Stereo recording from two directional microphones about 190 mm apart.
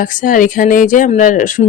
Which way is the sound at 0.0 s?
45° left (ahead or behind).